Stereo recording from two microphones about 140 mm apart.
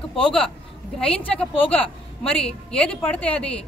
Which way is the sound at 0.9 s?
5° left (ahead or behind).